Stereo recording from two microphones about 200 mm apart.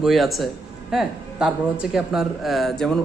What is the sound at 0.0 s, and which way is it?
A woman's voice, centre (ahead or behind).